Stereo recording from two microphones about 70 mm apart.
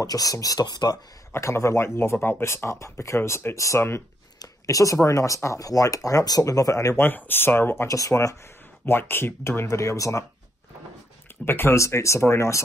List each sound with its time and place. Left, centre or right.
0.0 s speech: left
1.3 s speech: left
7.0 s speech: left
8.1 s speech: centre
8.8 s speech: left
9.7 s speech: left
11.4 s speech: left
11.7 s speech: left